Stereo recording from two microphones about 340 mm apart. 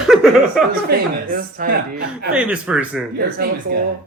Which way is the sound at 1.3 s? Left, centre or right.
Right.